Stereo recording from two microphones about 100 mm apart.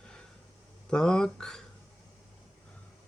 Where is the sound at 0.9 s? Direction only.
5° left (ahead or behind).